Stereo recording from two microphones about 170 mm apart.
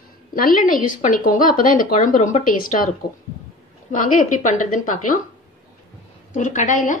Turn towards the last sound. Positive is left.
turn(degrees=50)  # may be behind; listen again after turning